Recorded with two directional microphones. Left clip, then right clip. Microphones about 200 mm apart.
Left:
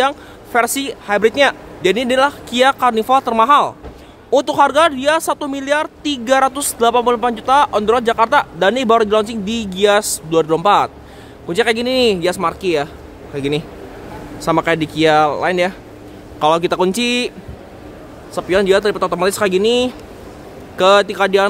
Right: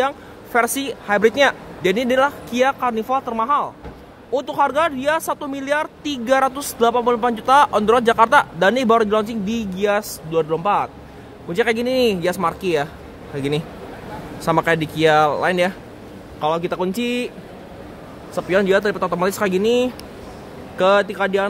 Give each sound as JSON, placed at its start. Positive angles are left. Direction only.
{"t": 0.0, "sound": "speech", "side_deg": 10}
{"t": 16.3, "sound": "speech", "side_deg": 25}
{"t": 18.3, "sound": "speech", "side_deg": 15}